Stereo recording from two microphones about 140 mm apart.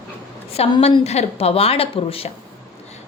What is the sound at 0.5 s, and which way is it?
Speech, 45° left (ahead or behind).